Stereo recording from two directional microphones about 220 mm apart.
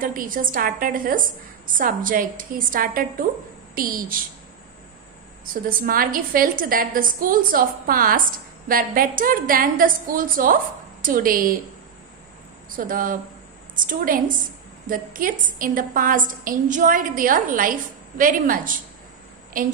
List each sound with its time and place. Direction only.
0.0 s a woman's voice: 40° right (ahead or behind)
5.4 s a woman's voice: 40° right (ahead or behind)
12.7 s a woman's voice: 40° right (ahead or behind)